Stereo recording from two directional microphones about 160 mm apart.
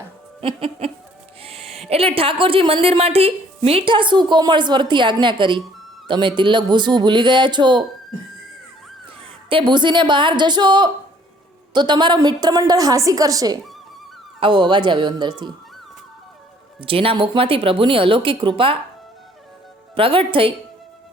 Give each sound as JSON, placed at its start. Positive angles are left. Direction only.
{"t": 0.4, "sound": "a woman's voice", "side_deg": -35}
{"t": 9.2, "sound": "a woman's voice", "side_deg": -35}
{"t": 16.8, "sound": "speech", "side_deg": -35}
{"t": 20.0, "sound": "speech", "side_deg": -35}